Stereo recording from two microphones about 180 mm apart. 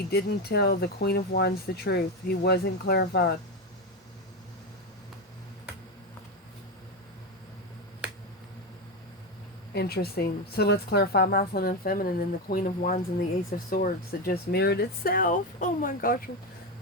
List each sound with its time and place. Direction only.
0.1 s speech: 60° left (ahead or behind)
9.7 s speech: 60° left (ahead or behind)